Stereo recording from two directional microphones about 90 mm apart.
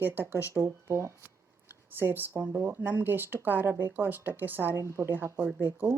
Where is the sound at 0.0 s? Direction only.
20° right (ahead or behind).